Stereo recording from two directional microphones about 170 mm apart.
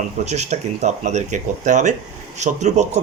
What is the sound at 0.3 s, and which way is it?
Speech, 40° right (ahead or behind).